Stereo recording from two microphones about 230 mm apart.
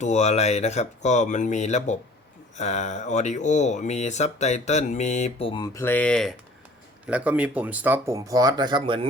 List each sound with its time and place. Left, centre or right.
0.0 s speech: left; by 9.0 s right